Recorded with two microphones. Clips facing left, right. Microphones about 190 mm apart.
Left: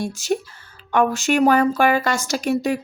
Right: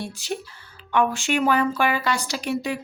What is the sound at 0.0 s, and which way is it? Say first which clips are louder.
Speech: left 7 dB; 45° left (ahead or behind).